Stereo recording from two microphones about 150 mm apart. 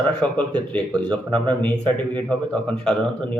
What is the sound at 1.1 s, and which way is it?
Speech, 35° right (ahead or behind).